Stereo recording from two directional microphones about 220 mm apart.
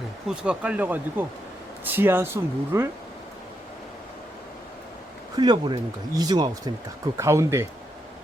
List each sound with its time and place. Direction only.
0.3 s speech: 5° right (ahead or behind)
5.4 s speech: 20° right (ahead or behind)